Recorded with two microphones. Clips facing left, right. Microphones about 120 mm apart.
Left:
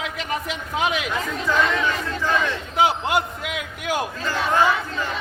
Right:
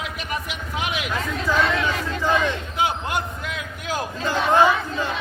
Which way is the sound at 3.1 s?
70° left (ahead or behind).